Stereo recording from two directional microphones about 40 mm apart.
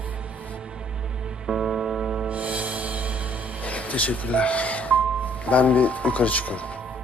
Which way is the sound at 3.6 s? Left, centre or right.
Left.